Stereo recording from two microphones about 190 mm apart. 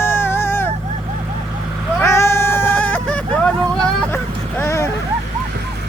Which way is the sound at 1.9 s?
15° left (ahead or behind).